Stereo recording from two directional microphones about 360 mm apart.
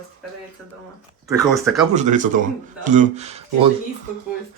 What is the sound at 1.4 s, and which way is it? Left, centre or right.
Speech, centre.